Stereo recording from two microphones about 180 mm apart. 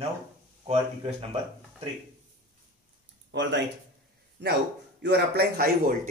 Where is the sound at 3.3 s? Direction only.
80° right.